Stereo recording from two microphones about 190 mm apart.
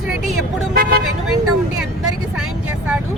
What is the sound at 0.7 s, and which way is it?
Speech, 50° right (ahead or behind).